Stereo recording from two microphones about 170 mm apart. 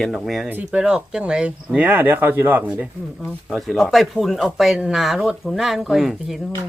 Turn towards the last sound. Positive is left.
turn(degrees=0)  # may be behind; listen again after turning